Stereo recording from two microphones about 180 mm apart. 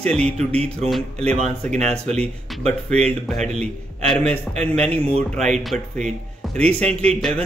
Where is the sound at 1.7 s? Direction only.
40° right (ahead or behind).